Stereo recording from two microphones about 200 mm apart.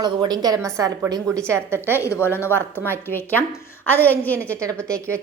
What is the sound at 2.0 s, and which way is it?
A woman's voice, 15° left (ahead or behind).